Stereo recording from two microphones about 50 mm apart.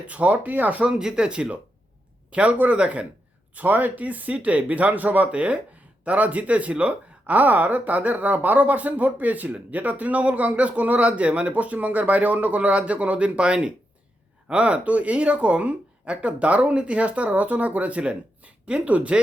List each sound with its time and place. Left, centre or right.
0.0 s speech: right
0.9 s speech: centre